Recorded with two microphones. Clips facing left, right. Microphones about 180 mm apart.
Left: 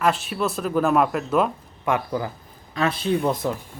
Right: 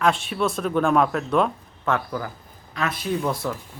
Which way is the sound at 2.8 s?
30° left (ahead or behind).